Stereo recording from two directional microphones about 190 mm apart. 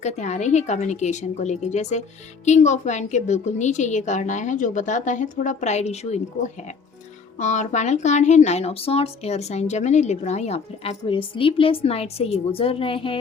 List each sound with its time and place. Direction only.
0.0 s a woman's voice: 40° left (ahead or behind)
7.3 s a woman's voice: 40° left (ahead or behind)